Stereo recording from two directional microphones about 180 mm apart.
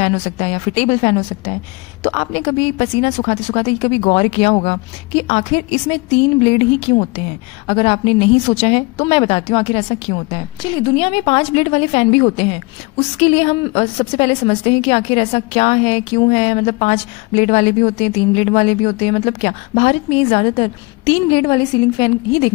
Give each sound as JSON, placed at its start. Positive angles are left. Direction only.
{"t": 0.0, "sound": "a woman's voice", "side_deg": 35}